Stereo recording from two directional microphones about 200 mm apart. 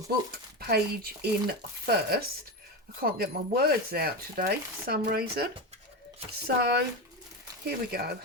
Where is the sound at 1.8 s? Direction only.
50° right (ahead or behind).